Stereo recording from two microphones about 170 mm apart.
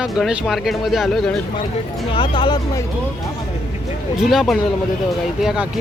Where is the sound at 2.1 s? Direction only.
25° left (ahead or behind).